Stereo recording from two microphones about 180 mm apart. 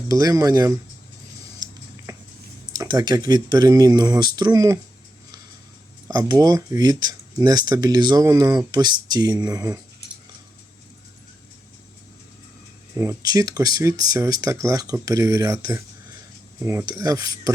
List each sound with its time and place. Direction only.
0.1 s speech: 20° right (ahead or behind)
1.5 s a sound: 20° right (ahead or behind)
2.7 s speech: 25° right (ahead or behind)
6.1 s speech: 20° right (ahead or behind)
13.0 s speech: 20° right (ahead or behind)